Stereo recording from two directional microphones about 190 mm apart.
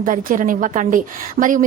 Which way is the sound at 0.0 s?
45° right (ahead or behind).